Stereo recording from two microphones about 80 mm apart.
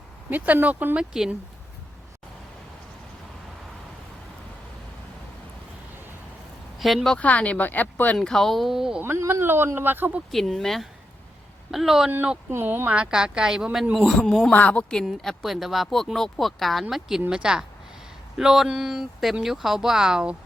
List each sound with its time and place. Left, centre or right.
0.3 s speech: right
6.7 s speech: centre
7.2 s speech: centre
8.2 s speech: centre
9.0 s speech: right
10.3 s speech: centre
12.5 s speech: right
12.9 s a woman's voice: centre
14.5 s speech: centre
15.0 s a woman's voice: centre